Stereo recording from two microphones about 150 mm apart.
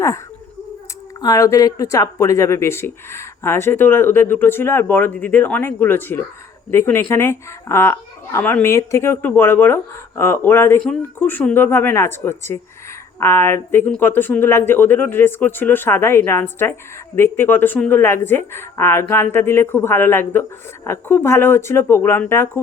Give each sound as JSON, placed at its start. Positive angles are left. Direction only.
{"t": 1.2, "sound": "speech", "side_deg": 20}